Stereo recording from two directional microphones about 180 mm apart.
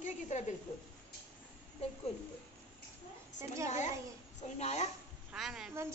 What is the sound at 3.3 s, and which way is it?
Speech, 15° right (ahead or behind).